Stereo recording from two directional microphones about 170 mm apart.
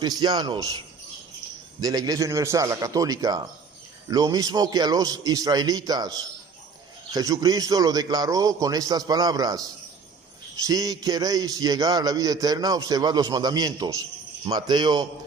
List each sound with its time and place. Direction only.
0.0 s a man's voice: 25° right (ahead or behind)
1.8 s a man's voice: 20° right (ahead or behind)
10.7 s a man's voice: 20° right (ahead or behind)